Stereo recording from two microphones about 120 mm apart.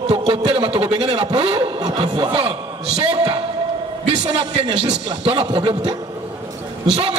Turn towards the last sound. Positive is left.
turn(degrees=-55)  # may be behind; listen again after turning